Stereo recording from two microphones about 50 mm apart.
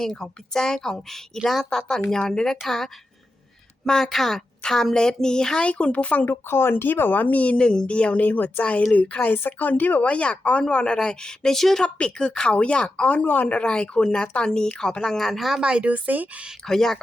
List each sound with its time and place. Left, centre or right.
0.0 s a woman's voice: centre
5.6 s a woman's voice: left
6.2 s a woman's voice: left; by 11.9 s centre
11.9 s a woman's voice: centre
13.2 s speech: left
13.6 s a woman's voice: left; by 15.6 s centre
15.6 s speech: centre
15.9 s speech: right
16.6 s a woman's voice: centre